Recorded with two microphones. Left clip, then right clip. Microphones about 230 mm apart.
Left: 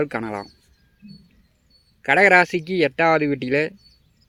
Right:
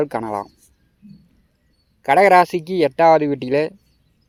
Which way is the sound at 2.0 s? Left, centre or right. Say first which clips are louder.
Right 3 dB; centre.